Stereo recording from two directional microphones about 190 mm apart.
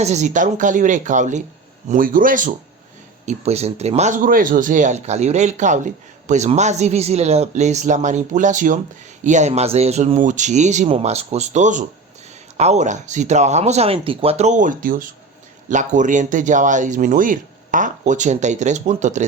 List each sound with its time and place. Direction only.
0.0 s speech: 35° right (ahead or behind)
3.2 s speech: 35° right (ahead or behind)